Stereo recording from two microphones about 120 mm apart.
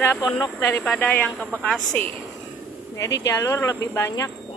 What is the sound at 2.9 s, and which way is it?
Speech, 25° left (ahead or behind).